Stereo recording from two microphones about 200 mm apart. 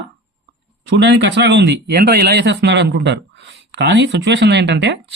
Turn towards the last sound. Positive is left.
turn(degrees=-60)  # may be behind; listen again after turning